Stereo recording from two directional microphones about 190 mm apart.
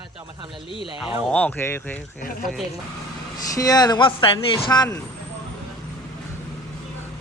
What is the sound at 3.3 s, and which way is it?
Speech, 20° left (ahead or behind).